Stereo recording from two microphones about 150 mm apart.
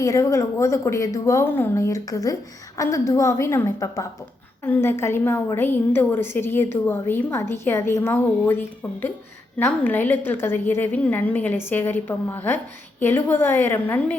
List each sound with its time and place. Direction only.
0.0 s a woman's voice: 20° left (ahead or behind)